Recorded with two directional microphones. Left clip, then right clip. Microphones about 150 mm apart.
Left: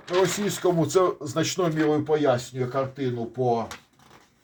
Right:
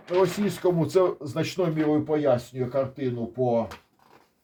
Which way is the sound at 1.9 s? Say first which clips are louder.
Even; 5° left (ahead or behind).